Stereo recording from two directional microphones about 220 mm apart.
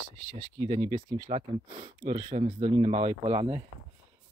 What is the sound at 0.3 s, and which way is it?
Speech, 20° right (ahead or behind).